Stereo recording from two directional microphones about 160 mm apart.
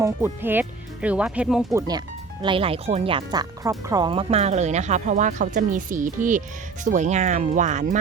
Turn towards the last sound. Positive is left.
turn(degrees=-50)  # may be behind; listen again after turning